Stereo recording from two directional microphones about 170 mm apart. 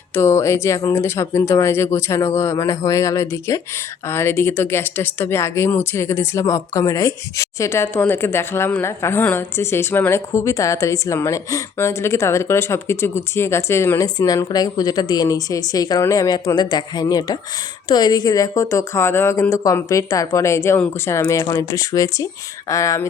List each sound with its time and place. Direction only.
0.1 s a woman's voice: 15° left (ahead or behind)